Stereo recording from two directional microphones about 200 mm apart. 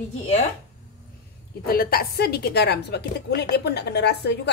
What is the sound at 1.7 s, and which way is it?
A woman's voice, 50° left (ahead or behind).